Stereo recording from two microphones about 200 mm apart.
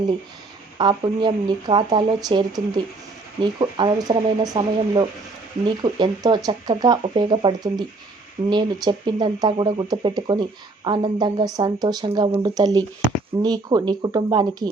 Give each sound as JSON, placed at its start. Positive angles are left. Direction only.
{"t": 0.8, "sound": "speech", "side_deg": -20}